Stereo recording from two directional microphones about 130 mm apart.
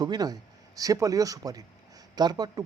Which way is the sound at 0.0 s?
30° right (ahead or behind).